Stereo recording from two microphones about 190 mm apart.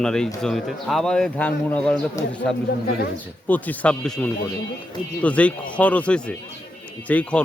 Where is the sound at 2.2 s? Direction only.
15° left (ahead or behind).